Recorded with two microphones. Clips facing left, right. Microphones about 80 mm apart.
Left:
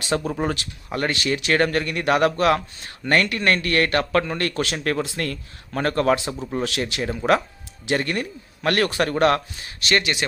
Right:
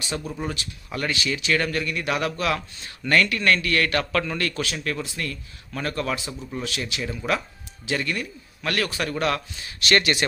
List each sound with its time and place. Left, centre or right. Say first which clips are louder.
0.2 s speech: left 6 dB; left
3.0 s a man's voice: left 1 dB; left
4.6 s speech: left 5 dB; left
6.3 s a man's voice: left 6 dB; left
6.7 s speech: left 4 dB; left
7.0 s speech: left 7 dB; left
9.9 s speech: right 1 dB; centre